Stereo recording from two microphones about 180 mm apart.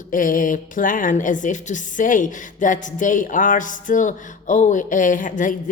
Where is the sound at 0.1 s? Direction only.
50° left (ahead or behind).